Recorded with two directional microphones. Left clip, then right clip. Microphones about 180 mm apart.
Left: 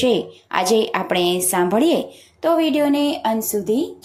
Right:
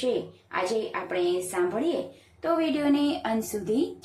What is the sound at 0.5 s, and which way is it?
A woman's voice, 35° left (ahead or behind).